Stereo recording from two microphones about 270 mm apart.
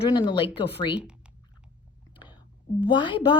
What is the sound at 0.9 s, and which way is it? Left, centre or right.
Speech, centre.